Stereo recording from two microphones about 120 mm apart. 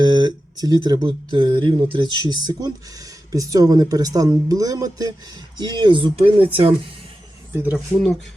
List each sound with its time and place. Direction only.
0.0 s a sound: 35° right (ahead or behind)
1.0 s speech: 40° right (ahead or behind)
7.5 s speech: 15° right (ahead or behind)